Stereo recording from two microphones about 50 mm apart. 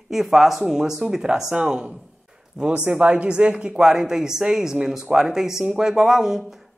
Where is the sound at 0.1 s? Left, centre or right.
Centre.